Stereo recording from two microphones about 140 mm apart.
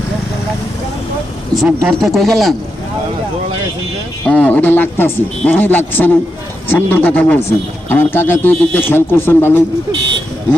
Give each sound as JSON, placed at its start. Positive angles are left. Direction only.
{"t": 1.5, "sound": "speech", "side_deg": -5}
{"t": 4.3, "sound": "a man's voice", "side_deg": 10}